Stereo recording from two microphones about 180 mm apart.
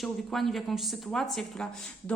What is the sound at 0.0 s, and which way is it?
A woman's voice, centre (ahead or behind).